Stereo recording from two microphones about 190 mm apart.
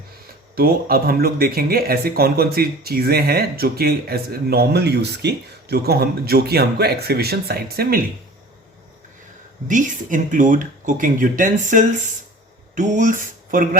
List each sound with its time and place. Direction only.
0.5 s speech: 50° right (ahead or behind)
9.6 s speech: 40° right (ahead or behind)